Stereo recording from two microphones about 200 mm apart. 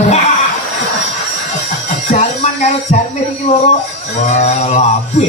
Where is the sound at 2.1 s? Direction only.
35° left (ahead or behind).